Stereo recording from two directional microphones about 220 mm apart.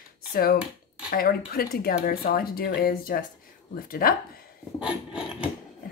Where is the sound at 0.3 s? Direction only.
40° left (ahead or behind).